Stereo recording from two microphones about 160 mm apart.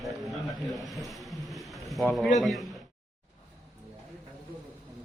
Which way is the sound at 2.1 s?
Centre (ahead or behind).